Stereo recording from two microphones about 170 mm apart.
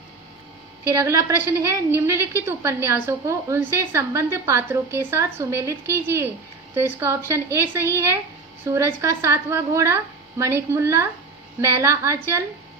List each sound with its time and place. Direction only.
0.9 s a woman's voice: 15° right (ahead or behind)